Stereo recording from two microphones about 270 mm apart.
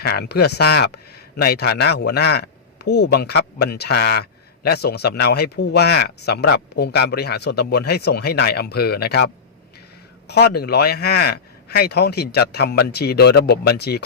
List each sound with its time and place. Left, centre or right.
0.0 s speech: left